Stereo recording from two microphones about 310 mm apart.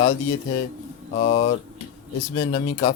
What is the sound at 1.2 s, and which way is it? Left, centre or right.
A man's voice, left.